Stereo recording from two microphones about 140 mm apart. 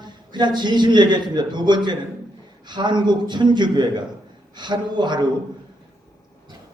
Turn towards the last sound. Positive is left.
turn(degrees=-30)  # may be behind; listen again after turning